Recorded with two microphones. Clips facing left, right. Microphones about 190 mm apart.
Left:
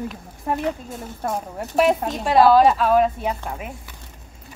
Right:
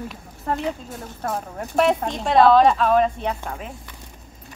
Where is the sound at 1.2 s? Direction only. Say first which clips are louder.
Left 1 dB; 5° left (ahead or behind).